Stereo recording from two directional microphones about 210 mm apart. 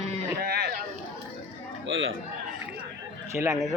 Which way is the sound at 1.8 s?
65° right (ahead or behind).